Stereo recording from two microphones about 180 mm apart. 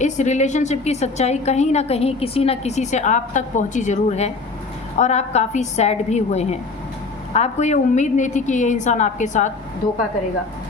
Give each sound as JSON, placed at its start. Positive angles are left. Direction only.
{"t": 0.0, "sound": "a woman's voice", "side_deg": 40}